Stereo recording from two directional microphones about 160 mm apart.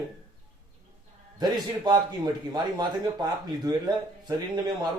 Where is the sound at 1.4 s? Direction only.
25° right (ahead or behind).